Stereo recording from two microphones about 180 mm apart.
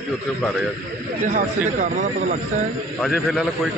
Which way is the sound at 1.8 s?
40° right (ahead or behind).